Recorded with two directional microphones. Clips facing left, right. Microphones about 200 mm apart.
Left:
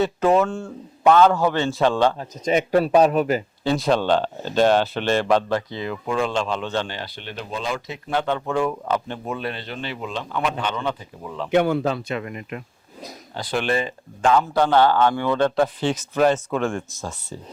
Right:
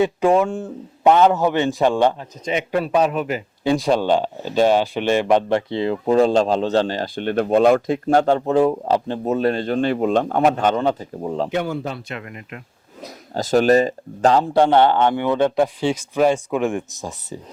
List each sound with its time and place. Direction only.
0.0 s a man's voice: 15° right (ahead or behind)
2.1 s a man's voice: 40° left (ahead or behind)
3.6 s speech: 15° right (ahead or behind); by 11.5 s 40° right (ahead or behind)
11.5 s speech: 60° left (ahead or behind); by 11.9 s 75° left (ahead or behind)
13.3 s a man's voice: 40° right (ahead or behind); by 17.4 s 15° right (ahead or behind)